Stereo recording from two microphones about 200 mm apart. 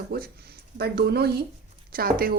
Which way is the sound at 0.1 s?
50° right (ahead or behind).